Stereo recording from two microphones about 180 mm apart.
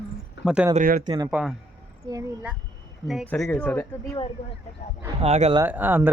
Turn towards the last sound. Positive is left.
turn(degrees=-10)  # may be behind; listen again after turning